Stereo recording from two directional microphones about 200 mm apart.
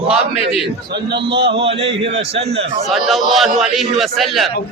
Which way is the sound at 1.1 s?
60° right (ahead or behind).